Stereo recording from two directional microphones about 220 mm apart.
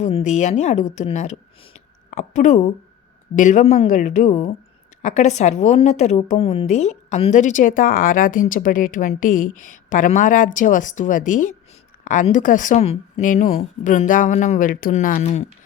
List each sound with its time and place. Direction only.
0.0 s a woman's voice: 30° left (ahead or behind)